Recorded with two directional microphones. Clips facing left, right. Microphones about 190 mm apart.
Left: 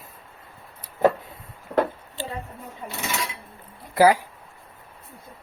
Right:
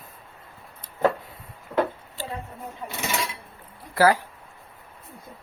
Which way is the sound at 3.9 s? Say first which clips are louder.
Left 2 dB; 15° left (ahead or behind).